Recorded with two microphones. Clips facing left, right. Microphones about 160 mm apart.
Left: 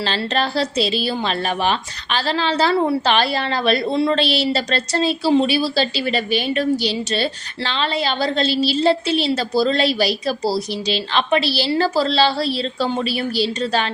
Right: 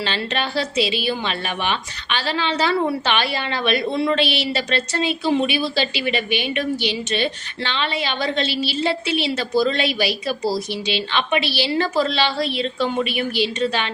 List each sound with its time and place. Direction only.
0.0 s a woman's voice: 35° left (ahead or behind)